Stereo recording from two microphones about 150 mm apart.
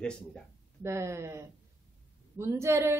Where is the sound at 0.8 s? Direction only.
20° right (ahead or behind).